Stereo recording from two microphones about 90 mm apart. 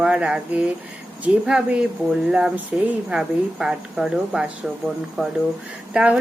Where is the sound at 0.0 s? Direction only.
10° right (ahead or behind).